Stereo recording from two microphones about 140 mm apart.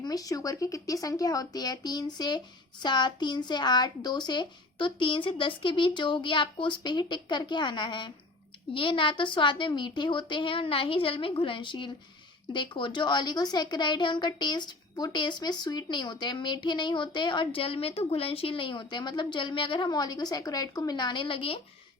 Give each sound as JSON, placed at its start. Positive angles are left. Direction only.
{"t": 0.0, "sound": "a woman's voice", "side_deg": 25}